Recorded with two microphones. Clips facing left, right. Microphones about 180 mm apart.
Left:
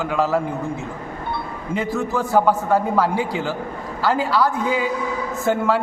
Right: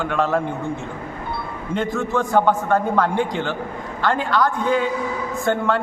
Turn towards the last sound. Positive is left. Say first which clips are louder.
# left 1 dB
turn(degrees=5)  # may be behind; listen again after turning